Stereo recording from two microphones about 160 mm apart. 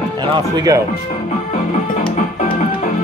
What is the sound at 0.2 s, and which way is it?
Speech, 25° right (ahead or behind).